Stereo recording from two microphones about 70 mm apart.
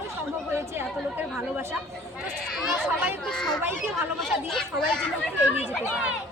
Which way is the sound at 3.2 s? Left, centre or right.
Centre.